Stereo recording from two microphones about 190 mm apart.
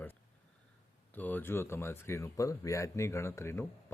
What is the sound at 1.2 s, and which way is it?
Speech, 10° left (ahead or behind).